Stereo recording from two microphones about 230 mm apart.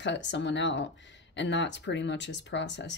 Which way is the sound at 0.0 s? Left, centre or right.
Left.